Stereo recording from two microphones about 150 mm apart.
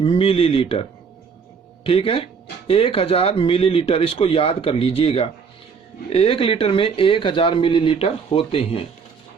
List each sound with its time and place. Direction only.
0.0 s speech: 40° left (ahead or behind)